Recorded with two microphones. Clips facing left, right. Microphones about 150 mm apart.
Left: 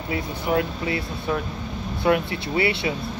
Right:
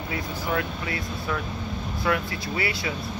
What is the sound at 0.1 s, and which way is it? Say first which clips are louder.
Speech: left 5 dB; 25° left (ahead or behind).